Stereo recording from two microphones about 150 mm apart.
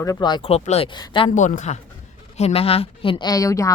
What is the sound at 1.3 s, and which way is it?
Speech, 55° left (ahead or behind).